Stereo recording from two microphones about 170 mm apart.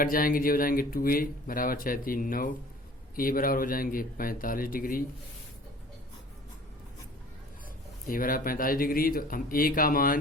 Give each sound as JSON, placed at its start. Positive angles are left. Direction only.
{"t": 0.0, "sound": "speech", "side_deg": 55}
{"t": 8.0, "sound": "speech", "side_deg": 55}